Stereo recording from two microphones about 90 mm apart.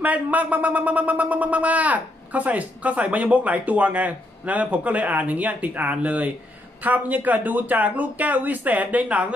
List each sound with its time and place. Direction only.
0.0 s speech: 15° right (ahead or behind)